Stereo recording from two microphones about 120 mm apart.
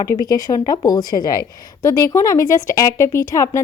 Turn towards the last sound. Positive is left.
turn(degrees=25)  # may be behind; listen again after turning